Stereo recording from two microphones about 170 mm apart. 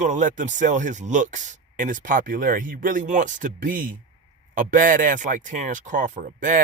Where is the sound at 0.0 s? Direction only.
45° right (ahead or behind).